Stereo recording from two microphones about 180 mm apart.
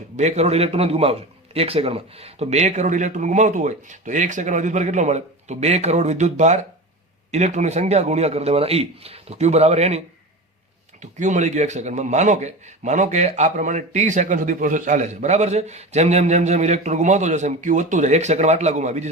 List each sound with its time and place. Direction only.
0.2 s speech: 40° right (ahead or behind)
11.0 s speech: 40° right (ahead or behind)